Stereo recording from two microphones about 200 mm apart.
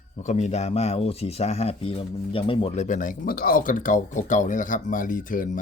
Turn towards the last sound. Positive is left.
turn(degrees=40)  # may be behind; listen again after turning